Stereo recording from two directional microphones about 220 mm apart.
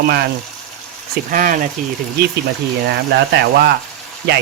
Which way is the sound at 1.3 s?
35° right (ahead or behind).